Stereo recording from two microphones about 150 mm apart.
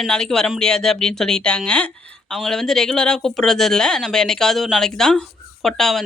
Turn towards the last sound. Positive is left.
turn(degrees=0)  # may be behind; listen again after turning